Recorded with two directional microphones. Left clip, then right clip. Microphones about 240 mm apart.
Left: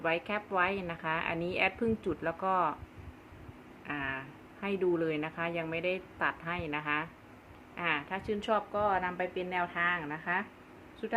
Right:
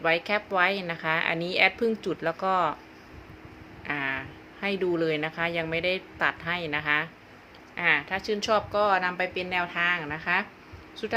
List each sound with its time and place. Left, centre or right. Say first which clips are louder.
0.0 s speech: right 7 dB; centre
3.8 s a woman's voice: right 7 dB; right